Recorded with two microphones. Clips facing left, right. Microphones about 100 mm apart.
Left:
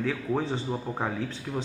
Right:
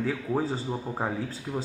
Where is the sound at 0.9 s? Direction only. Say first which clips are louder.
Even; 10° right (ahead or behind).